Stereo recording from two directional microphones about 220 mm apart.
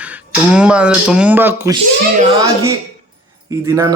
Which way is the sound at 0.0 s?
5° right (ahead or behind).